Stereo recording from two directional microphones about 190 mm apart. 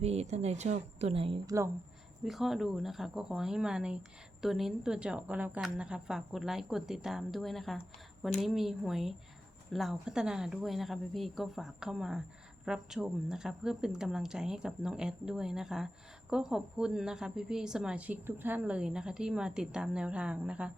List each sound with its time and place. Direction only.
0.0 s a woman's voice: 35° right (ahead or behind)
1.5 s speech: 15° right (ahead or behind)
2.2 s speech: centre (ahead or behind)